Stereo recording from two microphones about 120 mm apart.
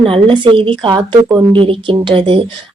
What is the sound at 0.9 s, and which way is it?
Speech, 25° right (ahead or behind).